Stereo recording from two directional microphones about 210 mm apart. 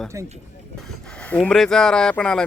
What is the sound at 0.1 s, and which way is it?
Speech, 15° right (ahead or behind).